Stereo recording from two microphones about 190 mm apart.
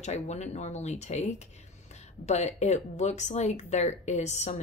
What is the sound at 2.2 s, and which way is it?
Speech, 35° left (ahead or behind).